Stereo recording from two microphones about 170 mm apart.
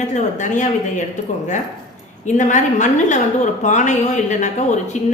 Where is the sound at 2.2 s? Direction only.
45° left (ahead or behind).